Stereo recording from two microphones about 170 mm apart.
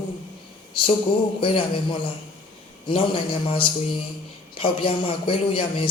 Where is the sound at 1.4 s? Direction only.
30° left (ahead or behind).